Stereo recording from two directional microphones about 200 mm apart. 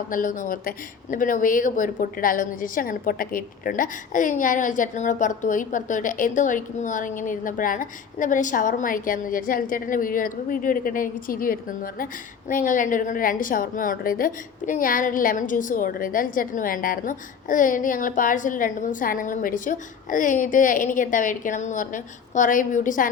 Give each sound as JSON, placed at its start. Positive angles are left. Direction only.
{"t": 0.1, "sound": "a woman's voice", "side_deg": 40}